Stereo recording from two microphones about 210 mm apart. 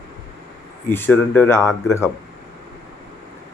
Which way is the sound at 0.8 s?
10° left (ahead or behind).